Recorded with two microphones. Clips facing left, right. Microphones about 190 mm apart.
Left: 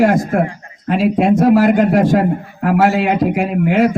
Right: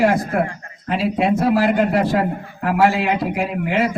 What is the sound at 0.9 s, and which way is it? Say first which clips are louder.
Speech: left 5 dB; 45° left (ahead or behind).